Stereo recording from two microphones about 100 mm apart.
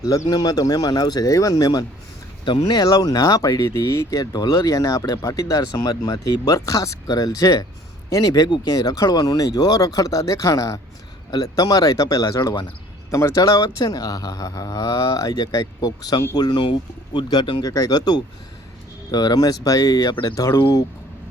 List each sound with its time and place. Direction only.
0.1 s speech: 40° left (ahead or behind)
2.4 s speech: 50° left (ahead or behind)
17.6 s speech: 40° left (ahead or behind)